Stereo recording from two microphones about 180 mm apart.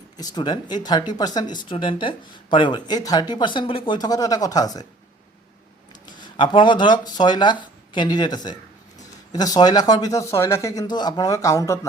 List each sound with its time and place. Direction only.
0.2 s speech: 25° left (ahead or behind)
6.1 s speech: 25° left (ahead or behind)